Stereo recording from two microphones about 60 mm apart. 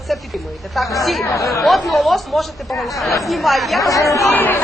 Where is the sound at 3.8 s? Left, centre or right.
Left.